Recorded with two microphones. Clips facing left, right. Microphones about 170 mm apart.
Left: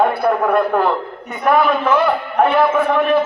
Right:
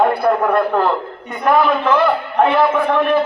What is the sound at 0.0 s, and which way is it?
A man's voice, centre (ahead or behind).